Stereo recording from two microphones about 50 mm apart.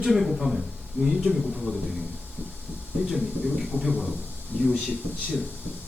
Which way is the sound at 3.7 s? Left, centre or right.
Right.